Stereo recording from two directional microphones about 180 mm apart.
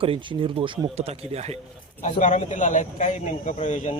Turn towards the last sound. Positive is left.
turn(degrees=40)  # may be behind; listen again after turning